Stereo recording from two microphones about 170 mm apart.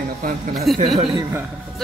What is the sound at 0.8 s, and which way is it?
Speech, 25° right (ahead or behind).